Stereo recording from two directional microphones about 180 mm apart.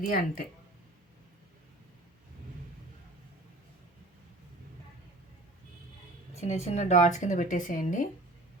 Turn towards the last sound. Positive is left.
turn(degrees=45)  # may be behind; listen again after turning